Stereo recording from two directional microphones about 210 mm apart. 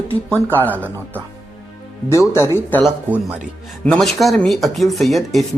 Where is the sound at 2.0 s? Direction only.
10° left (ahead or behind).